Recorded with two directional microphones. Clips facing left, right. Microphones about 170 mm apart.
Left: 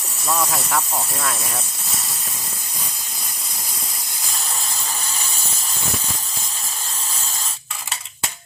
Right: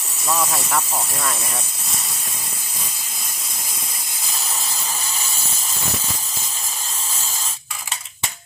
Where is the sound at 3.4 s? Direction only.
Centre (ahead or behind).